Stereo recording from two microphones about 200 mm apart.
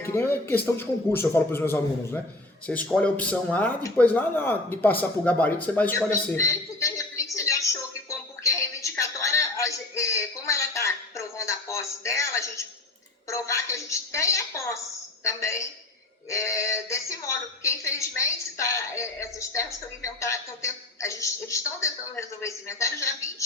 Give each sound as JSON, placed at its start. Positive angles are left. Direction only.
{"t": 0.0, "sound": "speech", "side_deg": 10}
{"t": 7.3, "sound": "music", "side_deg": 15}
{"t": 13.2, "sound": "a woman's voice", "side_deg": 15}